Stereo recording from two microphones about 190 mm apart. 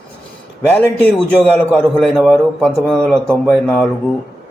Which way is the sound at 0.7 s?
5° left (ahead or behind).